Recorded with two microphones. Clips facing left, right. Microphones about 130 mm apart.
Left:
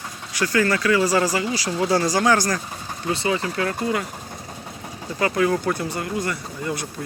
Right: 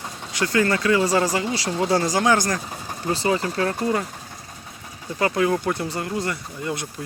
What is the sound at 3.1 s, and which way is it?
Speech, 35° right (ahead or behind).